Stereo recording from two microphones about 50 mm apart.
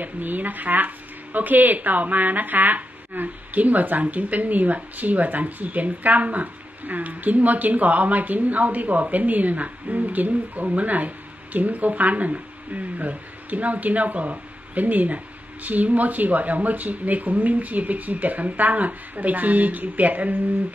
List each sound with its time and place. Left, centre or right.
0.0 s speech: right